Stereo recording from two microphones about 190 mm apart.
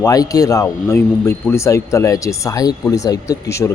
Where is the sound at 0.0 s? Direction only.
20° left (ahead or behind).